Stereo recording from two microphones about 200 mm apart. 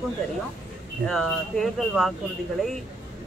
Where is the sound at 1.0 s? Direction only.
Centre (ahead or behind).